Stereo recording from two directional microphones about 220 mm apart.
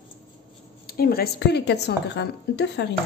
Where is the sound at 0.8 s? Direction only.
45° left (ahead or behind).